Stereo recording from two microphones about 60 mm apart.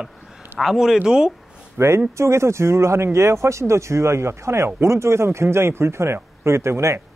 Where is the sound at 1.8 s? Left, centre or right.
Right.